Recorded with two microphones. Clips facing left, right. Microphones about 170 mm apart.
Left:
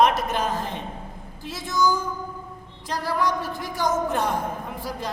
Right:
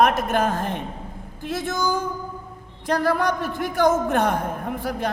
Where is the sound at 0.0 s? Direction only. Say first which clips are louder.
Right 2 dB; 50° right (ahead or behind).